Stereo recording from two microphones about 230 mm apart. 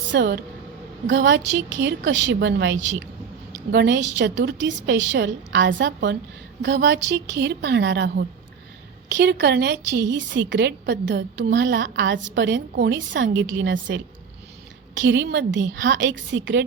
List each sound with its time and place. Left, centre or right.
0.1 s a woman's voice: right